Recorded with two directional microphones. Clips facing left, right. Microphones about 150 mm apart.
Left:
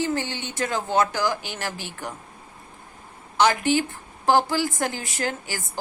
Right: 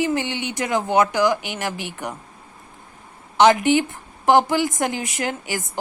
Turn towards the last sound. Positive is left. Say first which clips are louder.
# right 3 dB
turn(degrees=-20)  # may be behind; listen again after turning